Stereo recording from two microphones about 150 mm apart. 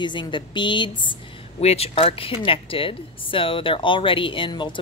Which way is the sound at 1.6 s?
45° left (ahead or behind).